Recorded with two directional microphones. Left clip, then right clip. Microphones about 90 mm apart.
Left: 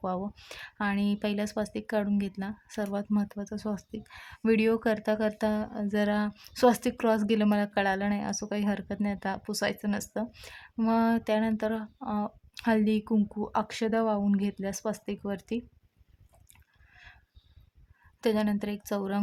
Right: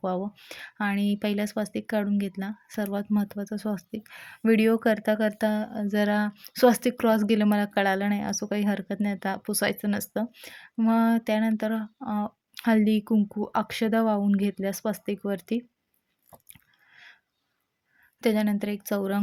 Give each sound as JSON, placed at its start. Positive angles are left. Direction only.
{"t": 0.0, "sound": "speech", "side_deg": -25}
{"t": 10.4, "sound": "speech", "side_deg": -25}
{"t": 16.5, "sound": "chewing", "side_deg": -25}
{"t": 18.2, "sound": "speech", "side_deg": -30}